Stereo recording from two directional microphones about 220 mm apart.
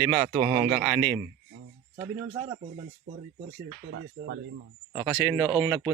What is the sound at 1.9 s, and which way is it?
Speech, 20° right (ahead or behind).